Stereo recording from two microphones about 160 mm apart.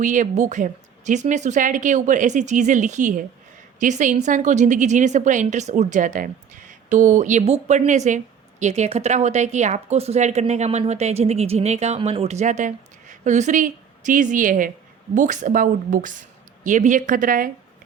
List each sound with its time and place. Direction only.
0.0 s a woman's voice: 50° right (ahead or behind)